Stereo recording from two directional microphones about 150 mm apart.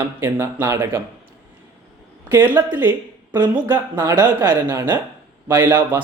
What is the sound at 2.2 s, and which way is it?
A woman's voice, 10° right (ahead or behind).